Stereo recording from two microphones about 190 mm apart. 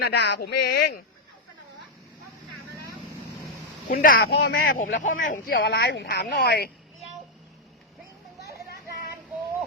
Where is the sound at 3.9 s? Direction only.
50° left (ahead or behind).